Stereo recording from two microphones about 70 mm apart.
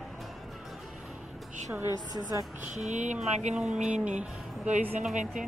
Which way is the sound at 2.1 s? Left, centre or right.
Right.